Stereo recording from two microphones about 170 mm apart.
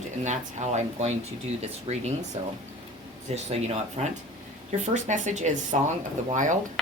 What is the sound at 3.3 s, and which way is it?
Speech, 40° right (ahead or behind).